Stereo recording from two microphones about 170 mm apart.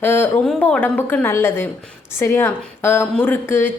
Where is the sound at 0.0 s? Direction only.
10° left (ahead or behind).